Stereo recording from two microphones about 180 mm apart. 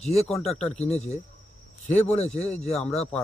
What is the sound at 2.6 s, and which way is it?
Speech, 5° left (ahead or behind).